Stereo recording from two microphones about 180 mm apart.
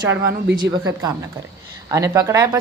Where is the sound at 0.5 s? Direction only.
25° right (ahead or behind).